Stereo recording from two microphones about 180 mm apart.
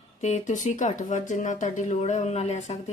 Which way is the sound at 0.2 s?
40° left (ahead or behind).